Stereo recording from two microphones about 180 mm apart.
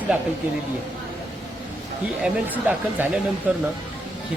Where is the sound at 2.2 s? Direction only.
10° right (ahead or behind).